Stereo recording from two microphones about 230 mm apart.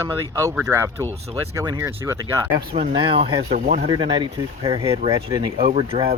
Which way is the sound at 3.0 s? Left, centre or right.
Right.